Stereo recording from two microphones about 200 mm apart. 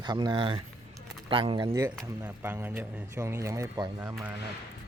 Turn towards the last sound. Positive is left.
turn(degrees=-10)  # may be behind; listen again after turning